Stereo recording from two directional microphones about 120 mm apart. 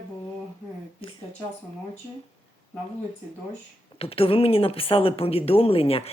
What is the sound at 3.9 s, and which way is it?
Speech, 55° left (ahead or behind).